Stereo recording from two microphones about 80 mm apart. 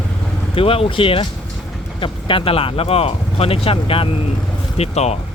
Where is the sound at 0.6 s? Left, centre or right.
Left.